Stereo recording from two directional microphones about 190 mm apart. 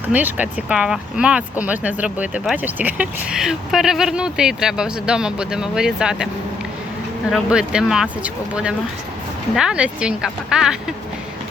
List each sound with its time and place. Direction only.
0.1 s speech: 10° right (ahead or behind)
7.3 s speech: 5° right (ahead or behind)